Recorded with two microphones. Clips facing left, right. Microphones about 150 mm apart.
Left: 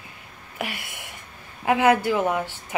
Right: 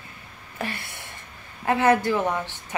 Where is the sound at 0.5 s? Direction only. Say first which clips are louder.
Even; 15° left (ahead or behind).